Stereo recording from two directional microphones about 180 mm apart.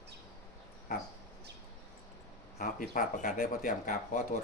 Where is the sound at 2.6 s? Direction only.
45° left (ahead or behind).